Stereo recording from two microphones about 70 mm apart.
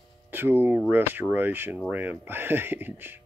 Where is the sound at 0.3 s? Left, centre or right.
Right.